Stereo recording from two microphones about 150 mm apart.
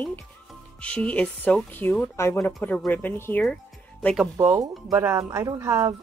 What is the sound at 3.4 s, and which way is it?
Music, 5° left (ahead or behind).